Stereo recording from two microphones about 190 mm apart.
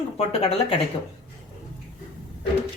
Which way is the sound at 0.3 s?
30° left (ahead or behind).